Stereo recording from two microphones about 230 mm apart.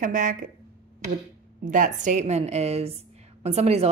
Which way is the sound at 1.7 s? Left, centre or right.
Right.